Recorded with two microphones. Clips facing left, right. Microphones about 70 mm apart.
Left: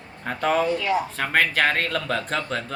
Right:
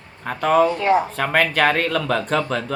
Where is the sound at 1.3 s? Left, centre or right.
Centre.